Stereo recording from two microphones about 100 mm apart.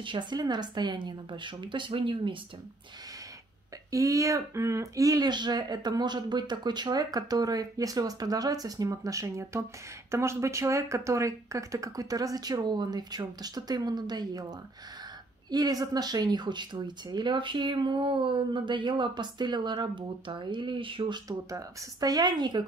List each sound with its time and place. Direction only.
0.0 s speech: 55° right (ahead or behind)
3.9 s speech: 35° right (ahead or behind); by 21.2 s 60° right (ahead or behind)
21.3 s speech: 35° right (ahead or behind)